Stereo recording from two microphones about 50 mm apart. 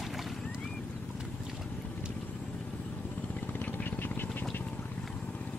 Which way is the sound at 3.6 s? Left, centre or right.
Left.